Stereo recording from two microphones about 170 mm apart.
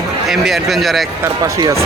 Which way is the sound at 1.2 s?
20° right (ahead or behind).